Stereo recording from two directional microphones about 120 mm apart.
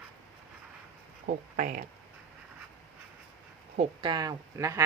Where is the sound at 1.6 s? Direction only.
90° right.